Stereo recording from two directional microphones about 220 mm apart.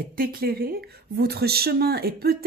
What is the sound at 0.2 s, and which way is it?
A woman's voice, 45° right (ahead or behind).